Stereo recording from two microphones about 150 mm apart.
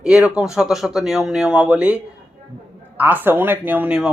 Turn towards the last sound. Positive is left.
turn(degrees=-5)  # may be behind; listen again after turning